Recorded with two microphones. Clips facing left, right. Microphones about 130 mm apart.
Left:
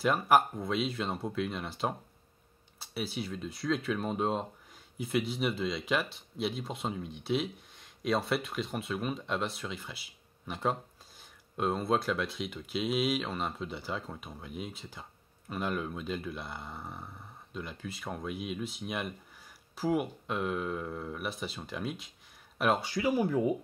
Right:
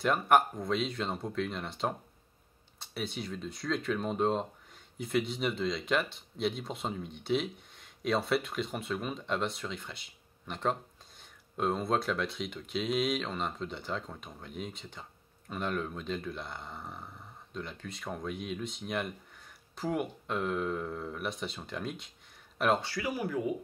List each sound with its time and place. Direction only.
0.0 s speech: 5° left (ahead or behind)
22.8 s speech: 25° left (ahead or behind)